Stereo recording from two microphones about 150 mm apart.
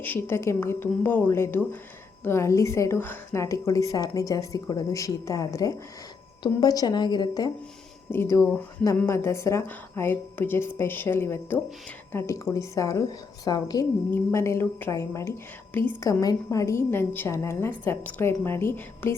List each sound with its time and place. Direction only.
0.0 s a woman's voice: 15° left (ahead or behind)